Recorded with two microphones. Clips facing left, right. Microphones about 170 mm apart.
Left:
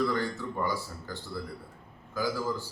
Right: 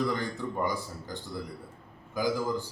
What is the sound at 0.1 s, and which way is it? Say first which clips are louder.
A man's voice: left 1 dB; 20° right (ahead or behind).